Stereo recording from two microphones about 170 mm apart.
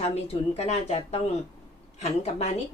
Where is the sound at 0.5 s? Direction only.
40° left (ahead or behind).